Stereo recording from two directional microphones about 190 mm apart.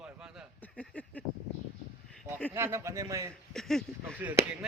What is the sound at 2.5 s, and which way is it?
Speech, 15° right (ahead or behind).